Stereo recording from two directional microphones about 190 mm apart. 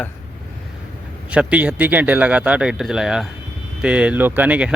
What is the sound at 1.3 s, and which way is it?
Speech, 5° right (ahead or behind).